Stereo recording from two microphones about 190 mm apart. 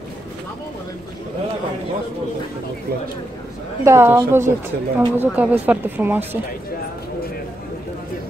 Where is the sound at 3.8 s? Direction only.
15° right (ahead or behind).